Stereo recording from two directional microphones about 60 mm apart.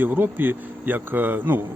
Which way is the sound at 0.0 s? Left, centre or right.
Right.